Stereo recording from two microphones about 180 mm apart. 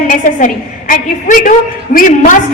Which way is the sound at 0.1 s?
45° left (ahead or behind).